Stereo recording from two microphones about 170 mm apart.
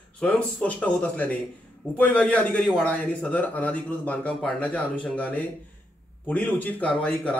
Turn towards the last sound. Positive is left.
turn(degrees=10)  # may be behind; listen again after turning